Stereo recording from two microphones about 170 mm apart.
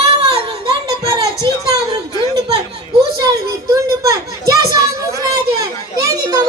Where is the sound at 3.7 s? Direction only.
20° right (ahead or behind).